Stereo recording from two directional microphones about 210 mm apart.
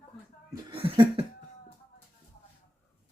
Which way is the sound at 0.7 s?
25° right (ahead or behind).